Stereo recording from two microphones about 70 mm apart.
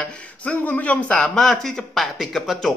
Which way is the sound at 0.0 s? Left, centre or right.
Centre.